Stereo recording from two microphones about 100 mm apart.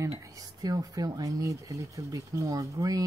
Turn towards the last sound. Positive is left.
turn(degrees=-35)  # may be behind; listen again after turning